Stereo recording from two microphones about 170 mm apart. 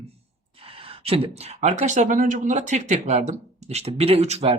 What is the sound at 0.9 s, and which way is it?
Speech, 35° right (ahead or behind).